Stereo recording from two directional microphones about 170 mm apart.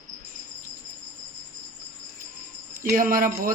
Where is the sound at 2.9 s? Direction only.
55° right (ahead or behind).